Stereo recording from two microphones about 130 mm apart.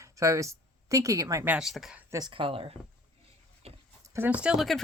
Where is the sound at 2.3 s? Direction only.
45° right (ahead or behind).